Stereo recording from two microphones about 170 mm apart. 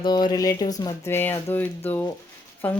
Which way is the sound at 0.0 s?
25° left (ahead or behind).